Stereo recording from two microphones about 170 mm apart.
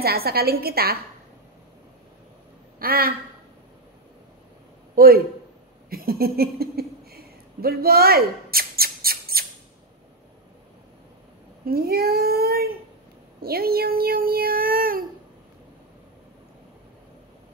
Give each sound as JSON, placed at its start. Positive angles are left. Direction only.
{"t": 0.0, "sound": "speech", "side_deg": -65}
{"t": 2.8, "sound": "speech", "side_deg": -65}
{"t": 4.9, "sound": "a man's voice", "side_deg": -60}
{"t": 5.9, "sound": "a sound", "side_deg": -60}
{"t": 11.6, "sound": "speech", "side_deg": -65}